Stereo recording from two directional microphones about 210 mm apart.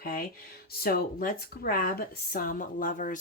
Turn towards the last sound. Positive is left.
turn(degrees=40)  # may be behind; listen again after turning